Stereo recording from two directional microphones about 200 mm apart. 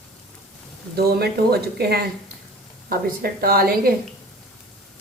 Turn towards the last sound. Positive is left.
turn(degrees=-50)  # may be behind; listen again after turning